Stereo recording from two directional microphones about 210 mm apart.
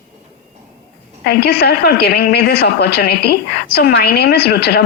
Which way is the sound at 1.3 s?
50° left (ahead or behind).